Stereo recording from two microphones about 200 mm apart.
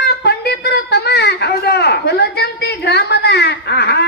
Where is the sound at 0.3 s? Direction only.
55° left (ahead or behind).